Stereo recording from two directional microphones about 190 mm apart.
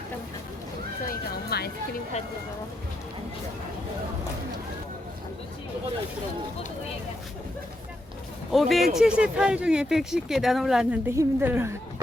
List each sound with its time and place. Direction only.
1.0 s neigh: 55° left (ahead or behind)
8.5 s speech: centre (ahead or behind)